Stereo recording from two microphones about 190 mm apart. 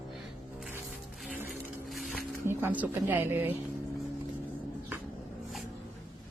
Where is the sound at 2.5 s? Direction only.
10° right (ahead or behind).